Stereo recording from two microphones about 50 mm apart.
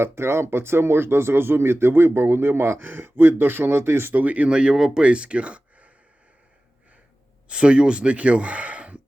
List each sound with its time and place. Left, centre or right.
0.0 s speech: right
4.1 s speech: right
4.4 s speech: right
7.4 s speech: right